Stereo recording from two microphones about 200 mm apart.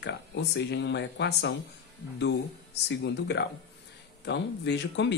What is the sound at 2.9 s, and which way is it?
Speech, 60° left (ahead or behind).